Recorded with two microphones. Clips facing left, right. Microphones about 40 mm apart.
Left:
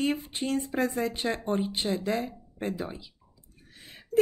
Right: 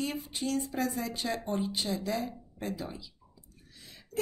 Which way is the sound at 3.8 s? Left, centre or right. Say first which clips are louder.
Left 4 dB; left.